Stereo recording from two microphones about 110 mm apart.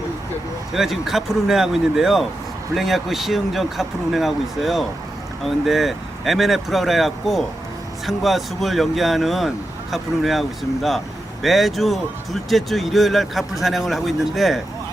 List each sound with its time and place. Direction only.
0.7 s speech: centre (ahead or behind)